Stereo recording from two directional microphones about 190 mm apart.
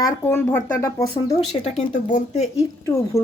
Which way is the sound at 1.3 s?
35° left (ahead or behind).